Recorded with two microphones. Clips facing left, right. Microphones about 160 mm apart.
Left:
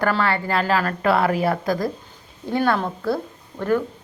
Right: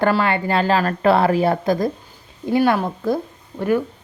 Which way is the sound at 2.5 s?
10° right (ahead or behind).